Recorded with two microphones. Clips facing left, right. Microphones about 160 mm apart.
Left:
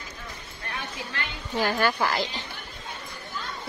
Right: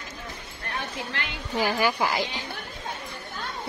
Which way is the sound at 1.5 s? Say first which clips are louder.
Even; 10° right (ahead or behind).